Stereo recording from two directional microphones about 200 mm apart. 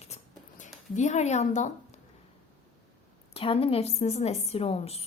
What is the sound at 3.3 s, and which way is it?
Speech, 30° left (ahead or behind).